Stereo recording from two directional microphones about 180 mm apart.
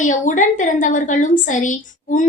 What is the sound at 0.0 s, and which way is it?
A woman's voice, 45° left (ahead or behind).